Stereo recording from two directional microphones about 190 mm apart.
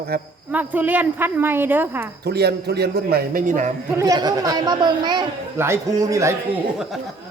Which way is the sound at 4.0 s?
20° right (ahead or behind).